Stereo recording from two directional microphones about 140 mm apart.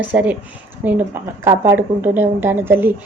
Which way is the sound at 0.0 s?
10° right (ahead or behind).